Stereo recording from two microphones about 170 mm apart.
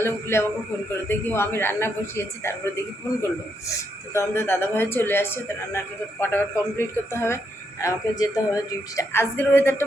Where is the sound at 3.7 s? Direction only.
15° left (ahead or behind).